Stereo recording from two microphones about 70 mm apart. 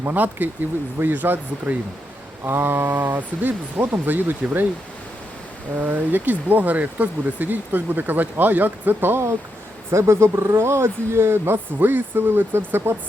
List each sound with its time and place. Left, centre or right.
0.0 s speech: right
2.4 s speech: right
5.7 s speech: right